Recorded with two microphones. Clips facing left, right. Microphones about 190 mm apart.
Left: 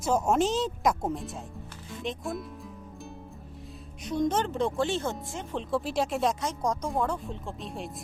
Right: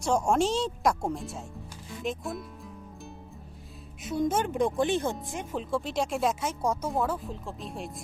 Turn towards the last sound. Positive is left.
turn(degrees=0)  # may be behind; listen again after turning